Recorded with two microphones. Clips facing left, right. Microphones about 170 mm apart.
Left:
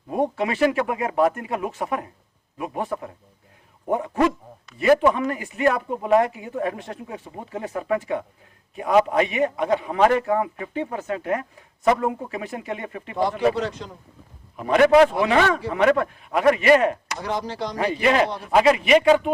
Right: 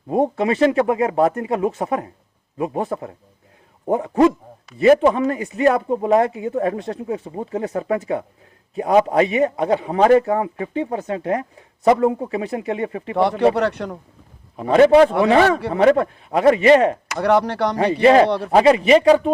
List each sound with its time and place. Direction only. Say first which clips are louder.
0.1 s a man's voice: right 5 dB; 30° right (ahead or behind)
13.1 s speech: right 5 dB; 70° right (ahead or behind)
14.5 s a man's voice: right 4 dB; 30° right (ahead or behind)
17.2 s speech: right 10 dB; 65° right (ahead or behind)
18.0 s a man's voice: right 8 dB; 35° right (ahead or behind)
18.3 s speech: right 10 dB; 70° right (ahead or behind)
18.5 s a man's voice: right 3 dB; 35° right (ahead or behind)